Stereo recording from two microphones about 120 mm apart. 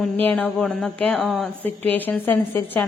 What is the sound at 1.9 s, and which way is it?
Speech, 15° left (ahead or behind).